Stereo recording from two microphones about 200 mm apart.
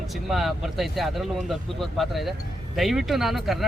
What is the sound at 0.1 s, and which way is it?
Speech, centre (ahead or behind).